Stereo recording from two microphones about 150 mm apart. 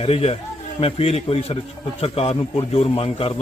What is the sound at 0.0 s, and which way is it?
Speech, 40° left (ahead or behind).